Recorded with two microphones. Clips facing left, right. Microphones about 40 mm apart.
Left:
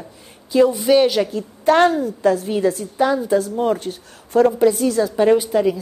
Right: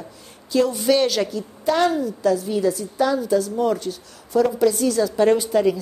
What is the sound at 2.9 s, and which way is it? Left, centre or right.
A woman's voice, left.